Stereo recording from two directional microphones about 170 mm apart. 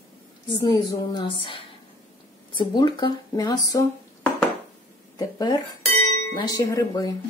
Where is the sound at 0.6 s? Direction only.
25° left (ahead or behind).